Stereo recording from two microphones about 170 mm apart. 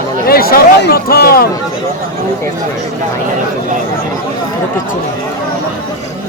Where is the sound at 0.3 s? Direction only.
60° left (ahead or behind).